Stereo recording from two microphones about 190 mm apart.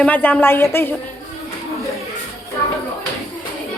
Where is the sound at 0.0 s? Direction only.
10° left (ahead or behind).